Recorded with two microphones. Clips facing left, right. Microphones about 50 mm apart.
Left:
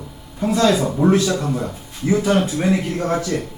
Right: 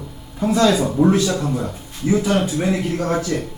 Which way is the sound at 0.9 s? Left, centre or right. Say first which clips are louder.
Even; centre.